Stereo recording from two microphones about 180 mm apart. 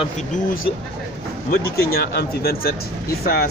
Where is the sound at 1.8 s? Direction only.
60° left (ahead or behind).